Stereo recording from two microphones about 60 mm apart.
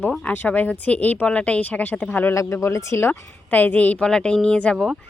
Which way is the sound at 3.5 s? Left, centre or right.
Left.